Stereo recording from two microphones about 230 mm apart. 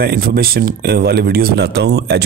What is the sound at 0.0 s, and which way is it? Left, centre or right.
Speech, right.